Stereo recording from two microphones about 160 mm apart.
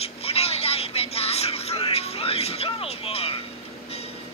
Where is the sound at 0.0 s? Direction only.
40° left (ahead or behind).